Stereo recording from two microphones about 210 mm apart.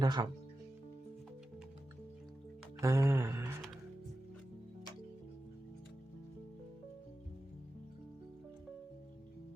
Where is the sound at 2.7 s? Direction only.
15° right (ahead or behind).